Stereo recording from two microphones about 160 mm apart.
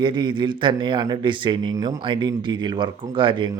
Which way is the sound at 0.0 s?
30° right (ahead or behind).